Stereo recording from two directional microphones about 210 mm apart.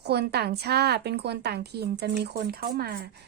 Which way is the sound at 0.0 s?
50° right (ahead or behind).